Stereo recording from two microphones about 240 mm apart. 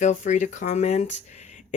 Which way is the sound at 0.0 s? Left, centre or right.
Left.